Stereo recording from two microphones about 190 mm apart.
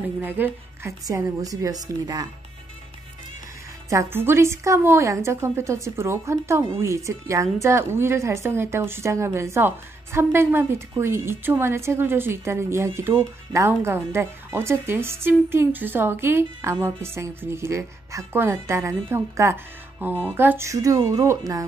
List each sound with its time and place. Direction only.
0.2 s a woman's voice: 10° right (ahead or behind)
3.9 s a woman's voice: 15° right (ahead or behind)